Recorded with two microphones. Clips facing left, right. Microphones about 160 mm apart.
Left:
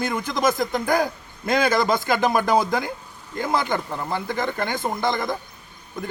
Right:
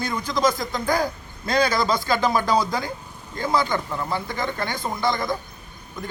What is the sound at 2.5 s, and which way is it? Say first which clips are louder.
Speech: left 2 dB; 55° left (ahead or behind).